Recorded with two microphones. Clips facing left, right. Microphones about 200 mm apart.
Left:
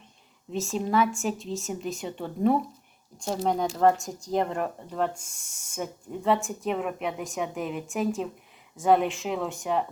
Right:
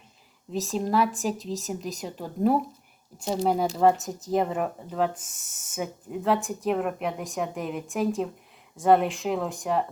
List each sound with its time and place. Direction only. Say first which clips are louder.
0.5 s speech: even; centre (ahead or behind)